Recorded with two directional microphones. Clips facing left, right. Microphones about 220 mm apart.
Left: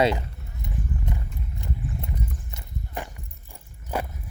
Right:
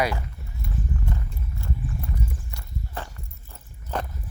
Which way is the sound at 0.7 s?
20° left (ahead or behind).